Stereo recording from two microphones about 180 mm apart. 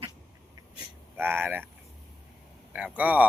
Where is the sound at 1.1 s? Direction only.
10° right (ahead or behind).